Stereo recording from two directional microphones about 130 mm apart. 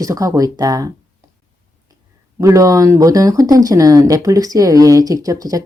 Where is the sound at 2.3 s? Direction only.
25° right (ahead or behind).